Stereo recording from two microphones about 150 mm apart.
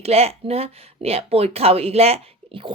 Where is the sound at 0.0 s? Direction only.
45° right (ahead or behind).